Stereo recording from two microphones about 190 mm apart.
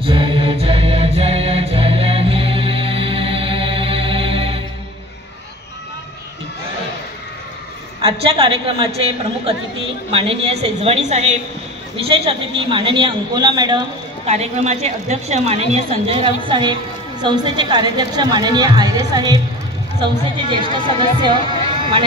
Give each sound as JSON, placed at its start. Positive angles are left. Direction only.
{"t": 0.0, "sound": "mantra", "side_deg": -25}
{"t": 8.0, "sound": "a woman's voice", "side_deg": -30}
{"t": 14.2, "sound": "a woman's voice", "side_deg": -35}